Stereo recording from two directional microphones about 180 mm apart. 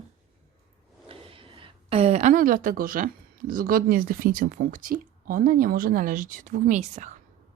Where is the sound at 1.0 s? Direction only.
30° right (ahead or behind).